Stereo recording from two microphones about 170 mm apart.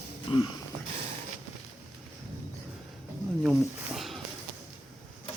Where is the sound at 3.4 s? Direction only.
5° right (ahead or behind).